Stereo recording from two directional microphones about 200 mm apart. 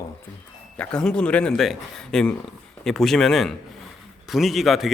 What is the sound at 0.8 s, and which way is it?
A man's voice, 5° left (ahead or behind).